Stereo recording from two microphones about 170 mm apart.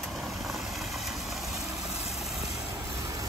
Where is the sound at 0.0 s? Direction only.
Centre (ahead or behind).